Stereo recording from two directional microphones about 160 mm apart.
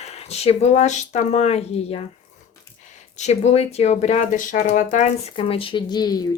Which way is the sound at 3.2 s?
45° left (ahead or behind).